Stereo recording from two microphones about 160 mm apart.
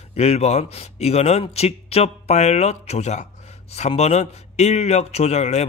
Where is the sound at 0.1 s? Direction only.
40° left (ahead or behind).